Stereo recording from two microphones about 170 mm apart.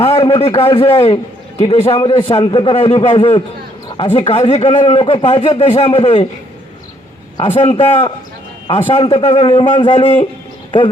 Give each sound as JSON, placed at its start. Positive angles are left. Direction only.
{"t": 0.0, "sound": "speech", "side_deg": 35}
{"t": 7.3, "sound": "speech", "side_deg": 35}